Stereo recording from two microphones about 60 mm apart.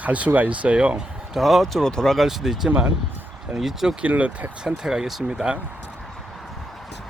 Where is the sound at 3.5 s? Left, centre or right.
Centre.